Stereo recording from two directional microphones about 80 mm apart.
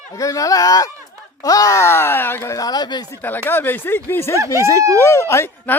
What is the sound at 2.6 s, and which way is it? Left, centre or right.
Speech, left.